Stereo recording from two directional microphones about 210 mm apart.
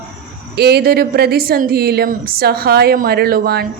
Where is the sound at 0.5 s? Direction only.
50° right (ahead or behind).